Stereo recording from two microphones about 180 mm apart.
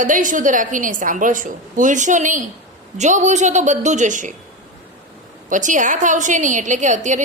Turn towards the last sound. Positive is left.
turn(degrees=-45)  # may be behind; listen again after turning